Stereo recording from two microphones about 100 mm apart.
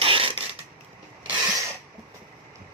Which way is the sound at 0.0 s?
65° right (ahead or behind).